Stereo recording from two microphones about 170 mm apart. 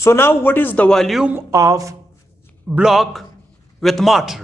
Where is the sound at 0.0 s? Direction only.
15° left (ahead or behind); by 1.4 s 5° right (ahead or behind).